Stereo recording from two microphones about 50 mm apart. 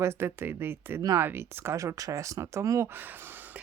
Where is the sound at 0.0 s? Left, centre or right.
Right.